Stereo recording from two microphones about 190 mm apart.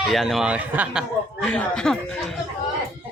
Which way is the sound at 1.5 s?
5° left (ahead or behind).